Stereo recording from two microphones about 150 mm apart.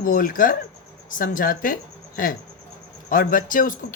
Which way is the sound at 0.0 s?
70° left (ahead or behind).